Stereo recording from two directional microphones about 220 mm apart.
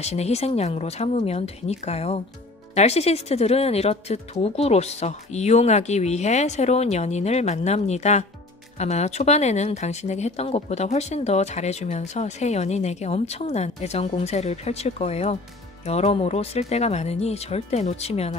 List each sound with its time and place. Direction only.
0.0 s speech: 30° left (ahead or behind)